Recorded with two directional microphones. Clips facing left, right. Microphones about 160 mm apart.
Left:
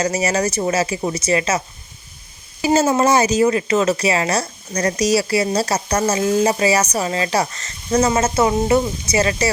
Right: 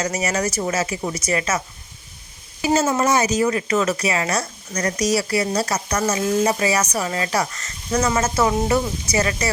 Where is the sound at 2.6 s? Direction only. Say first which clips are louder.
Left 3 dB; 35° left (ahead or behind).